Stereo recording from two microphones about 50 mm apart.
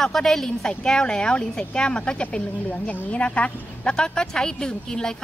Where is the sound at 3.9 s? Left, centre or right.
Centre.